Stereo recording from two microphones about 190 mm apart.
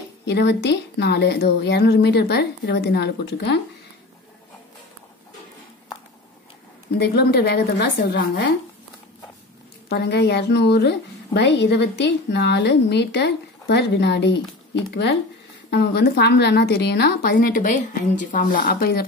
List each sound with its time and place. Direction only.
0.2 s a woman's voice: 65° left (ahead or behind)
7.0 s a woman's voice: 60° left (ahead or behind)
9.8 s a woman's voice: 60° left (ahead or behind)